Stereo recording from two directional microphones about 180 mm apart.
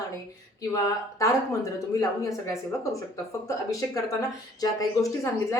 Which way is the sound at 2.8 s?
15° left (ahead or behind).